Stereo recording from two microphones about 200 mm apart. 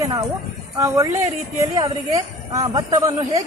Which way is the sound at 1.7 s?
20° right (ahead or behind).